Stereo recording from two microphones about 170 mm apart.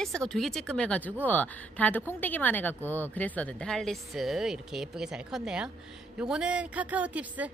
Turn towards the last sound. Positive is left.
turn(degrees=-10)  # may be behind; listen again after turning